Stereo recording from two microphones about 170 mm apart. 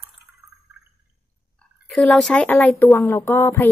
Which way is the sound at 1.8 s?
Centre (ahead or behind).